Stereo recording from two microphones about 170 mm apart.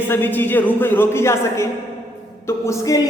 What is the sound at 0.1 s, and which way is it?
Speech, 10° left (ahead or behind).